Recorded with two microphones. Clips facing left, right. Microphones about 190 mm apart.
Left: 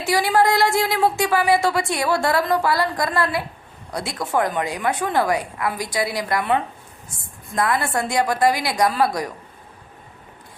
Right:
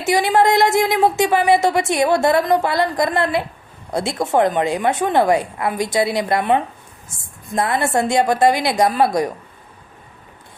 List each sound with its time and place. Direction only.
0.0 s speech: 20° right (ahead or behind)